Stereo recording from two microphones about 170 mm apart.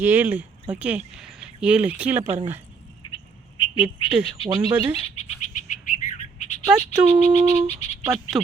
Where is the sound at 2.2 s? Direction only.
40° right (ahead or behind).